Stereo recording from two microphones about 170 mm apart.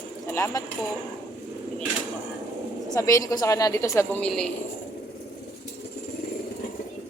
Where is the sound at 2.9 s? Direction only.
20° left (ahead or behind).